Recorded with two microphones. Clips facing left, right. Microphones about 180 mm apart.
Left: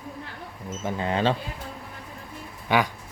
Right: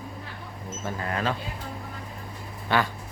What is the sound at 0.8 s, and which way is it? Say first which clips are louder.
Speech: left 5 dB; 20° left (ahead or behind).